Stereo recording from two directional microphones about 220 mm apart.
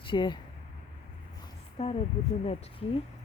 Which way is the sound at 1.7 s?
25° left (ahead or behind).